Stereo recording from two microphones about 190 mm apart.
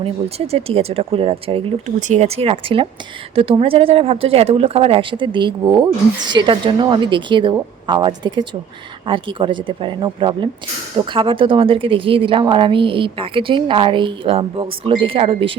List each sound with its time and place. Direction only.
0.0 s a woman's voice: 30° right (ahead or behind)